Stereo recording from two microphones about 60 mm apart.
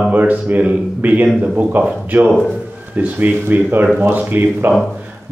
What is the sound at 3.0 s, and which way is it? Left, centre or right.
Speech, right.